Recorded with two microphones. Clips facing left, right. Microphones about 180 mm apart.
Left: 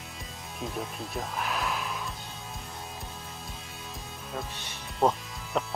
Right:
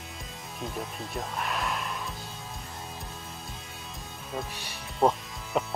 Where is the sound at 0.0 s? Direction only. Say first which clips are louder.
Right 1 dB; centre (ahead or behind).